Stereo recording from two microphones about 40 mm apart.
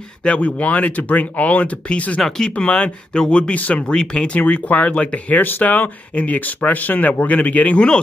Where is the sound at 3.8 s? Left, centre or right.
Left.